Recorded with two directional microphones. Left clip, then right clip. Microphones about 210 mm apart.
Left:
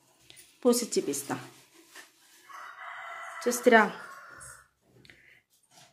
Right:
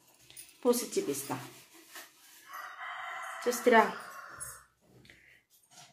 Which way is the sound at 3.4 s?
50° left (ahead or behind).